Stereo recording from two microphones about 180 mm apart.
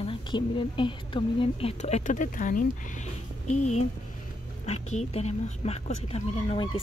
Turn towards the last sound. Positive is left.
turn(degrees=35)  # may be behind; listen again after turning